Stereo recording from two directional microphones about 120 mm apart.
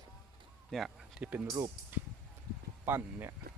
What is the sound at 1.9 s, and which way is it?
Speech, 15° right (ahead or behind).